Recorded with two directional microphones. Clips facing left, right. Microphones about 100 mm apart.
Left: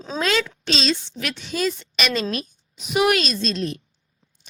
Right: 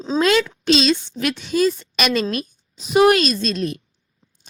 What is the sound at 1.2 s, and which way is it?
A woman's voice, 40° right (ahead or behind).